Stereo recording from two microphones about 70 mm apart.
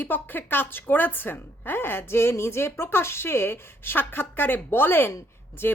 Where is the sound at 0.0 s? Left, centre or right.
Left.